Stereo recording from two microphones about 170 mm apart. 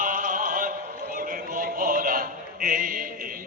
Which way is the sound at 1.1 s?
55° right (ahead or behind).